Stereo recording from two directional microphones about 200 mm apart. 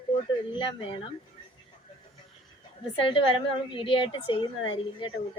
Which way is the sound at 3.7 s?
25° left (ahead or behind).